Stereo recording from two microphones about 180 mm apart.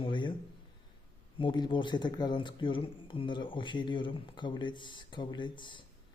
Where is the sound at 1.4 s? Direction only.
25° left (ahead or behind).